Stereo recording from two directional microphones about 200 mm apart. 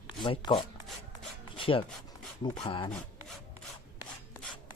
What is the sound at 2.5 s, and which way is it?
Speech, 30° left (ahead or behind).